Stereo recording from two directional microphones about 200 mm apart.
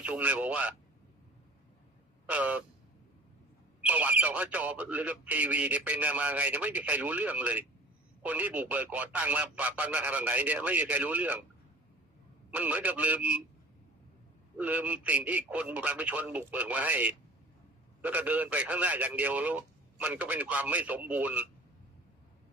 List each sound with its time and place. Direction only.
0.0 s speech: 5° right (ahead or behind)
2.2 s speech: 5° right (ahead or behind)
3.8 s speech: 10° right (ahead or behind)
12.5 s speech: 5° right (ahead or behind)
14.6 s speech: 5° right (ahead or behind)